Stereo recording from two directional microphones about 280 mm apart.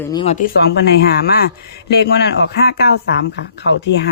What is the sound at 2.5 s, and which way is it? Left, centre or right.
Speech, left.